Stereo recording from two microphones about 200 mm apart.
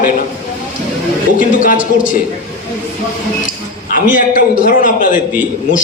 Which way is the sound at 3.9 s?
45° left (ahead or behind).